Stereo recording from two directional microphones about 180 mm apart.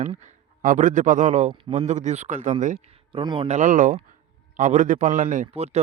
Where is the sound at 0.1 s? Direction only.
40° right (ahead or behind).